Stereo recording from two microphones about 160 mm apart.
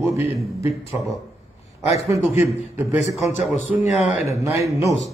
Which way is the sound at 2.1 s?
15° right (ahead or behind).